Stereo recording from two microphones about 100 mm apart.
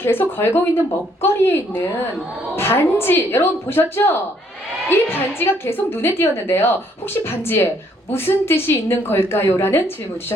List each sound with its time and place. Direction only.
0.0 s a woman's voice: 20° left (ahead or behind)